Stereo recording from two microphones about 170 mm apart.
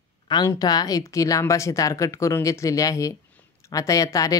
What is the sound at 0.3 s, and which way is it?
A woman's voice, 25° left (ahead or behind).